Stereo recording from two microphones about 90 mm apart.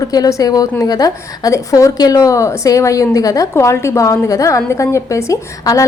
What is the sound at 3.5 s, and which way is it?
A woman's voice, 30° left (ahead or behind).